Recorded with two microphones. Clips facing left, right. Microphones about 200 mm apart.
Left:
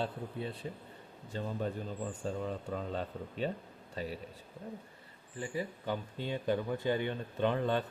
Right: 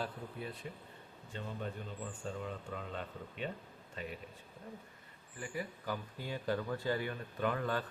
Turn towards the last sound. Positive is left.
turn(degrees=25)  # may be behind; listen again after turning